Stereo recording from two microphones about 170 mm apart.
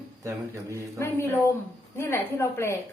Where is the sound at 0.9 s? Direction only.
15° left (ahead or behind).